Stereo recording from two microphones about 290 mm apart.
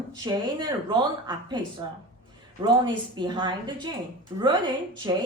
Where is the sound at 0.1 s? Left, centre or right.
Centre.